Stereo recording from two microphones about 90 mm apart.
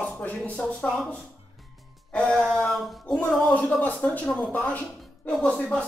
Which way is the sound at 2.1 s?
5° left (ahead or behind).